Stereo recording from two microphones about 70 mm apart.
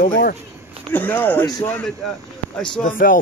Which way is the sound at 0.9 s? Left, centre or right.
Left.